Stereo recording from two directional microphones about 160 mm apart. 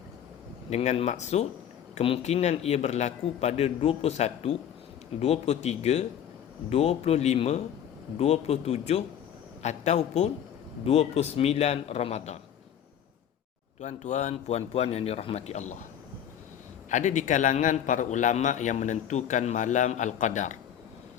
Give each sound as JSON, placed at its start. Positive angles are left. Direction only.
{"t": 0.7, "sound": "a man's voice", "side_deg": 40}
{"t": 13.8, "sound": "a man's voice", "side_deg": 45}
{"t": 16.9, "sound": "a man's voice", "side_deg": 50}